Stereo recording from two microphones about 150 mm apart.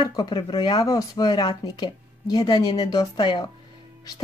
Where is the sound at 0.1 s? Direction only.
30° left (ahead or behind).